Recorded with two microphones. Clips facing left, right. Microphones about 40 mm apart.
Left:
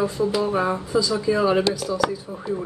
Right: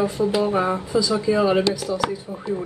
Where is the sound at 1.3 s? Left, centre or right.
Centre.